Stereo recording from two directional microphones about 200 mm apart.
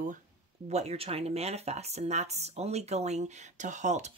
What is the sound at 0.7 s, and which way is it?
Speech, 30° right (ahead or behind).